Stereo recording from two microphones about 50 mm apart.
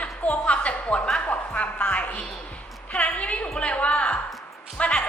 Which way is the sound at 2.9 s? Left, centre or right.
Left.